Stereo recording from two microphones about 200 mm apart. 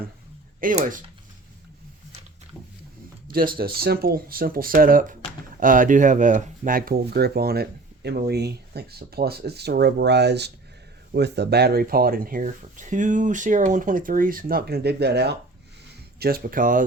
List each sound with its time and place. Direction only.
0.8 s speech: 40° right (ahead or behind)
3.2 s speech: 45° right (ahead or behind)